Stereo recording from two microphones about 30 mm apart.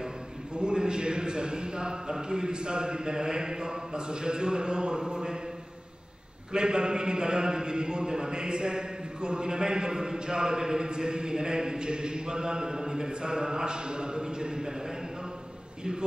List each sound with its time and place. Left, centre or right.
0.6 s a man's voice: right
6.5 s a man's voice: right